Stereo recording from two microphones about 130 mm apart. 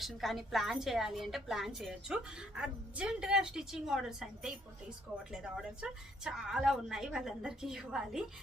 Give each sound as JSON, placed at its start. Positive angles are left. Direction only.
{"t": 0.0, "sound": "a woman's voice", "side_deg": 0}